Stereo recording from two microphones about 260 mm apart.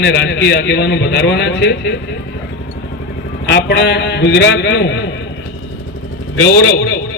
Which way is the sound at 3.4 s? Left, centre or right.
Left.